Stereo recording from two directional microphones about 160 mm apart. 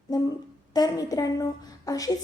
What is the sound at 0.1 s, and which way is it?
A woman's voice, 25° left (ahead or behind).